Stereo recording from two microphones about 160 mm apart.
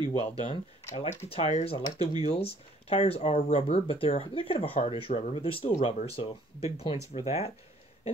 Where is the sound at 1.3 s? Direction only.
40° left (ahead or behind).